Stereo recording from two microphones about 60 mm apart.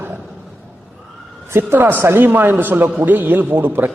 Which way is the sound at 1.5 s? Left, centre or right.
Right.